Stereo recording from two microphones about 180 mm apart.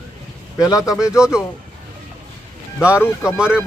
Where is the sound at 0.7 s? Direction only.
20° left (ahead or behind).